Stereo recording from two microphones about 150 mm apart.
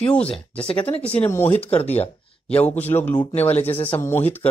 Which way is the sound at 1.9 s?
40° left (ahead or behind).